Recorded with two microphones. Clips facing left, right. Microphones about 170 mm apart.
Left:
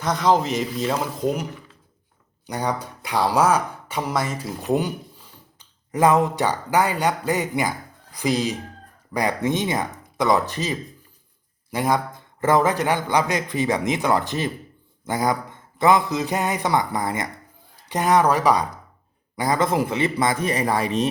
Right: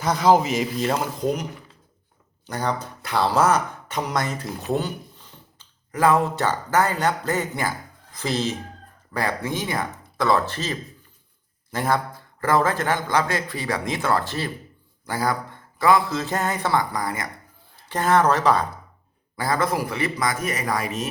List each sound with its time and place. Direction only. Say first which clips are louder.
0.0 s speech: right 2 dB; 5° right (ahead or behind)
2.5 s a man's voice: left 1 dB; 15° left (ahead or behind); by 21.1 s 30° left (ahead or behind)